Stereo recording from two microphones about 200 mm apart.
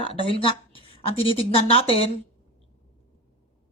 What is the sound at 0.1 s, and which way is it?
Speech, 25° left (ahead or behind).